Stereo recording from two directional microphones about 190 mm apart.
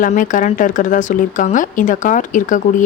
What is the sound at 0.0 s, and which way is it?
Speech, 45° left (ahead or behind).